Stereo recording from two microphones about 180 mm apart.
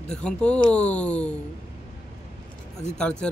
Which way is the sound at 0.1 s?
5° left (ahead or behind).